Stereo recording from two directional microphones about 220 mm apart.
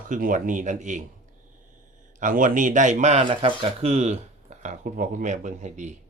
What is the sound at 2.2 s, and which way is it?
Speech, 35° right (ahead or behind).